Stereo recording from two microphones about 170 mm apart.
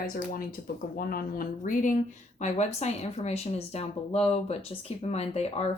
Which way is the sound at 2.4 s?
40° left (ahead or behind).